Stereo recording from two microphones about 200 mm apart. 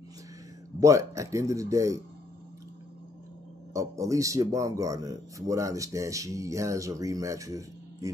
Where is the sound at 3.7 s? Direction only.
15° right (ahead or behind).